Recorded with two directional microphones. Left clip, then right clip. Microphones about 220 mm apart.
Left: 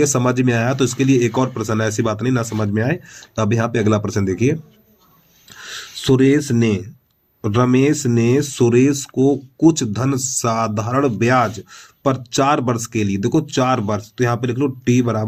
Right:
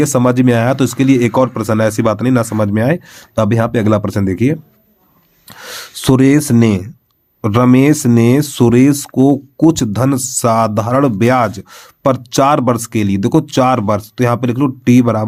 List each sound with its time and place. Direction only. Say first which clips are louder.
0.0 s speech: right 5 dB; 40° right (ahead or behind)